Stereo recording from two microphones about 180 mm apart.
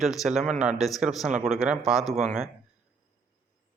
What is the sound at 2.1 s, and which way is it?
Speech, 40° right (ahead or behind).